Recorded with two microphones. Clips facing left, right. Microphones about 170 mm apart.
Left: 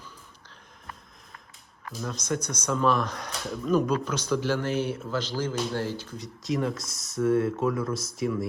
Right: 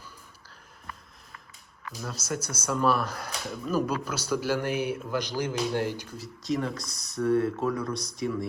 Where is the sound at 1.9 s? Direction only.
5° right (ahead or behind).